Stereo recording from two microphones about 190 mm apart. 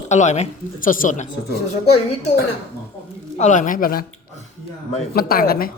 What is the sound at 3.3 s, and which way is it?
Speech, 40° left (ahead or behind).